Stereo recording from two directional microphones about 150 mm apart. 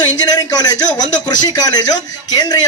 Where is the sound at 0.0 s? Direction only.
25° left (ahead or behind).